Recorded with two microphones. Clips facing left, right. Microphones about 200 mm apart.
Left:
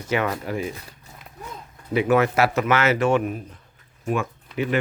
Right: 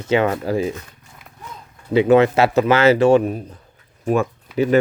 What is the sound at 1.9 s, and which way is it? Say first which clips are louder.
Speech: right 6 dB; 25° right (ahead or behind).